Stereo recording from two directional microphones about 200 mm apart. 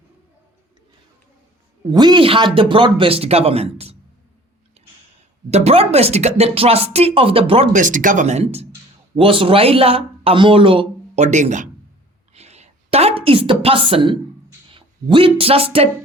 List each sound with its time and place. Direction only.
1.9 s speech: 20° right (ahead or behind)
5.5 s a woman's voice: 30° right (ahead or behind)